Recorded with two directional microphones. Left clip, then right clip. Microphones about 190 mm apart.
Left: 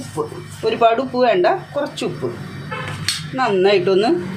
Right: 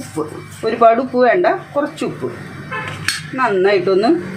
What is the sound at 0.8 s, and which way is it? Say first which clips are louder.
Speech: right 4 dB; 10° right (ahead or behind).